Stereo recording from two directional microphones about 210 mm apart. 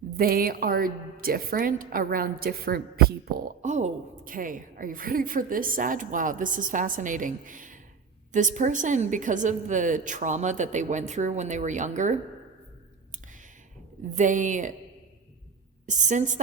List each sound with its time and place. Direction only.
0.1 s a woman's voice: 45° right (ahead or behind)
3.6 s a woman's voice: 35° right (ahead or behind)
14.0 s a woman's voice: 35° right (ahead or behind)
15.9 s a woman's voice: 35° right (ahead or behind)